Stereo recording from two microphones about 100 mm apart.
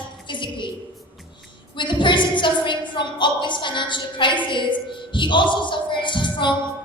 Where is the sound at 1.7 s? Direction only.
50° left (ahead or behind).